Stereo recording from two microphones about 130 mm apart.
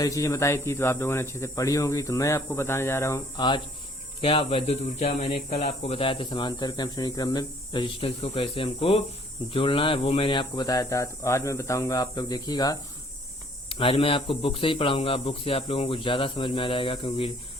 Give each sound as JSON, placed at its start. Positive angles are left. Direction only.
{"t": 0.0, "sound": "speech", "side_deg": 25}
{"t": 3.3, "sound": "speech", "side_deg": 35}
{"t": 10.5, "sound": "speech", "side_deg": 30}
{"t": 13.7, "sound": "speech", "side_deg": 45}